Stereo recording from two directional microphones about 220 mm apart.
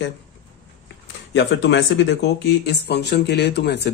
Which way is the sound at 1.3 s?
55° left (ahead or behind).